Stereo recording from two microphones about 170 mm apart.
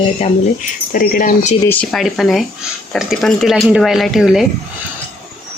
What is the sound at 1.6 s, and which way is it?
Speech, 10° left (ahead or behind).